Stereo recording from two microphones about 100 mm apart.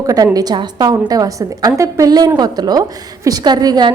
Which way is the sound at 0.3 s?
45° right (ahead or behind).